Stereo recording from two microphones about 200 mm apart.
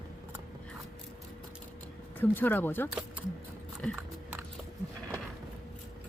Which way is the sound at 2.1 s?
10° left (ahead or behind).